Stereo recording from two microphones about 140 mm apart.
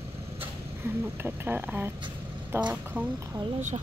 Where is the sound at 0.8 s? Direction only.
15° right (ahead or behind).